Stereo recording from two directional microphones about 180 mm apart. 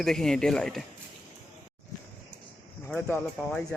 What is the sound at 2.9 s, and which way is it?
Speech, 5° left (ahead or behind).